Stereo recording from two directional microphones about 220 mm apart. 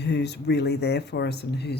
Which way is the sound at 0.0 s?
50° left (ahead or behind).